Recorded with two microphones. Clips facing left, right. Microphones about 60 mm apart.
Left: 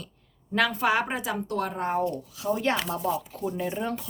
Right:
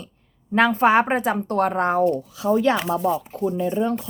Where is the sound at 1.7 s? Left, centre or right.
Right.